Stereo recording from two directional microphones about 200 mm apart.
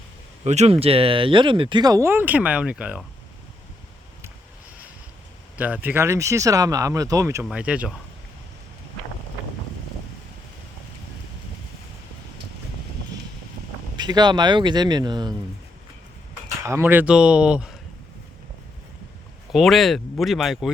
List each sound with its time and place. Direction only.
0.4 s speech: 35° right (ahead or behind); by 3.0 s 5° right (ahead or behind)
5.5 s speech: 5° right (ahead or behind)
7.4 s speech: 5° right (ahead or behind)
13.9 s speech: 20° right (ahead or behind)
16.6 s speech: 10° right (ahead or behind)
19.5 s speech: centre (ahead or behind)